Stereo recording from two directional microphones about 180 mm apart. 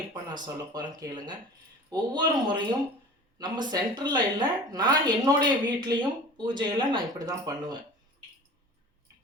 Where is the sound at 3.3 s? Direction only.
25° right (ahead or behind).